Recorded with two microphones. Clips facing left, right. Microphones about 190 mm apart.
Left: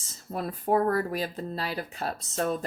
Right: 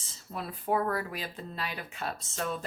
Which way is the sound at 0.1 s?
45° left (ahead or behind).